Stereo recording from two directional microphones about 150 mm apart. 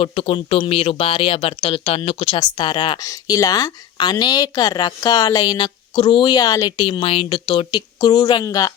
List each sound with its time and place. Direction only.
0.0 s speech: 40° left (ahead or behind); by 8.7 s 25° left (ahead or behind)